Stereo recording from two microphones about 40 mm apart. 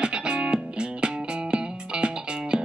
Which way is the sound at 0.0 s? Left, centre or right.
Right.